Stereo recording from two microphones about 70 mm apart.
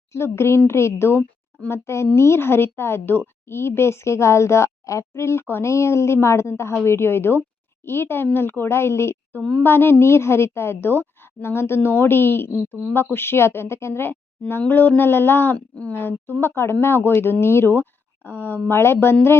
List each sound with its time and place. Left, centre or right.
0.1 s a woman's voice: left
15.5 s speech: centre
15.9 s a woman's voice: left